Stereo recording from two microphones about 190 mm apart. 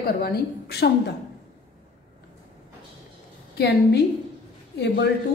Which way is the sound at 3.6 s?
60° left (ahead or behind).